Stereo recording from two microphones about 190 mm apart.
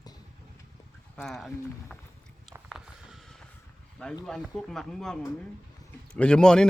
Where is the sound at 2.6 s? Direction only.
5° right (ahead or behind).